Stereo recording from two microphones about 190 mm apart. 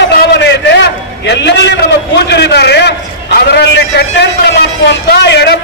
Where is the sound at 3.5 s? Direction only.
65° left (ahead or behind).